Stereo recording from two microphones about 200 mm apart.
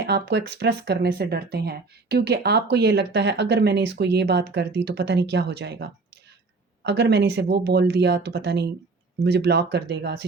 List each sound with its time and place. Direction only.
0.0 s speech: 55° right (ahead or behind)